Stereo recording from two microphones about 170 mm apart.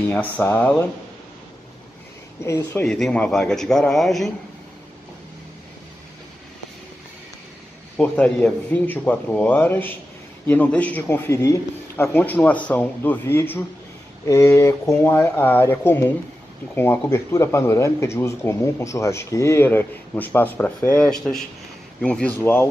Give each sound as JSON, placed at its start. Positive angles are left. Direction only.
{"t": 0.1, "sound": "speech", "side_deg": 10}
{"t": 2.4, "sound": "speech", "side_deg": 15}
{"t": 8.0, "sound": "speech", "side_deg": 5}